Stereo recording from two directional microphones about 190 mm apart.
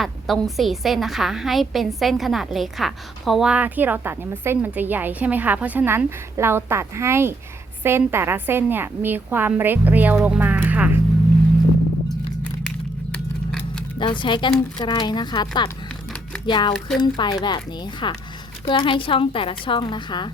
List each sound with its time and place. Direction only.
0.0 s a woman's voice: centre (ahead or behind)
12.4 s a sound: 5° left (ahead or behind)
14.0 s speech: 25° left (ahead or behind)